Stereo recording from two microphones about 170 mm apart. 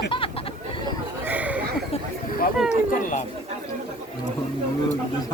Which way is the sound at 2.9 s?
50° left (ahead or behind).